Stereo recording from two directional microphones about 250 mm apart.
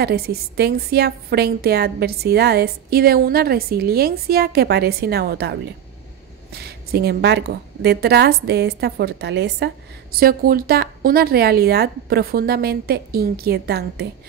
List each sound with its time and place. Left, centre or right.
0.0 s a woman's voice: right